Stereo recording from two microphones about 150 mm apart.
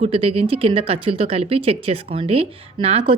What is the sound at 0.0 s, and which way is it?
A woman's voice, 40° right (ahead or behind).